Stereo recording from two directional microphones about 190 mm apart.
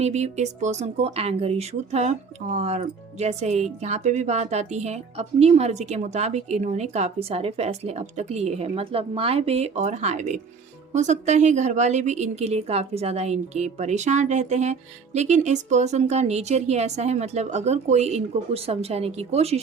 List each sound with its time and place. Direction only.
0.0 s speech: 35° right (ahead or behind)